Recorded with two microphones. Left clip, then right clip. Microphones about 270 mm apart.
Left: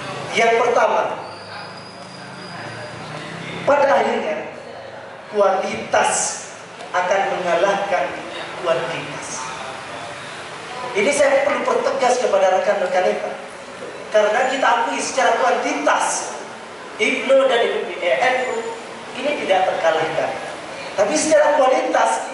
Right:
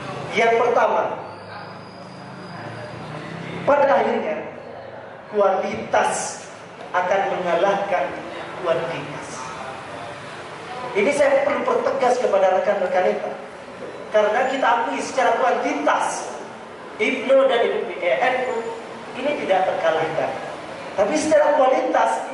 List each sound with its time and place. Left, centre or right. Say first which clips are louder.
0.0 s a man's voice: left 2 dB; centre
3.6 s a woman's voice: left 1 dB; centre
5.4 s a man's voice: left 2 dB; centre
6.9 s a man's voice: left 2 dB; centre
11.0 s a woman's voice: left 1 dB; centre
14.2 s a woman's voice: left 2 dB; centre
21.4 s a woman's voice: left 1 dB; centre